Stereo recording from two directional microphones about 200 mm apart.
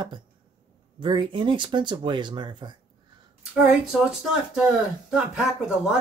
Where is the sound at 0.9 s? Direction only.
25° right (ahead or behind).